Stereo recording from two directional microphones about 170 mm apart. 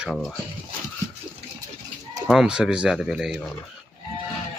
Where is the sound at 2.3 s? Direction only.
5° right (ahead or behind).